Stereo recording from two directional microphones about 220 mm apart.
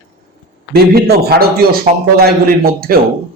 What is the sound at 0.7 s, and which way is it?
A man's voice, 45° right (ahead or behind).